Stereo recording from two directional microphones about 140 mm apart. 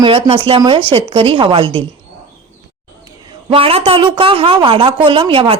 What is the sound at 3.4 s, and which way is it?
A woman's voice, 40° right (ahead or behind).